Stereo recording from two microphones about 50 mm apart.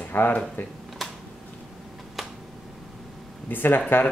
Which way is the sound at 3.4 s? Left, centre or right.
Left.